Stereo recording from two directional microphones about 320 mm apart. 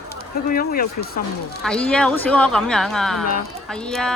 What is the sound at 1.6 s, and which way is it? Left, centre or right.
Speech, centre.